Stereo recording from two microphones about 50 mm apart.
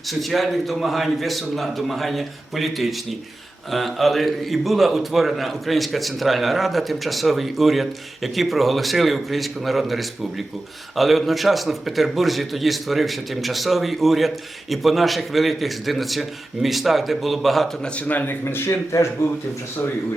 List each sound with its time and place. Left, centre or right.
0.1 s a man's voice: centre
18.1 s speech: left
18.4 s speech: left